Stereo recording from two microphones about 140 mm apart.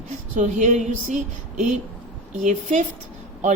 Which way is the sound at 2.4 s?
65° right (ahead or behind).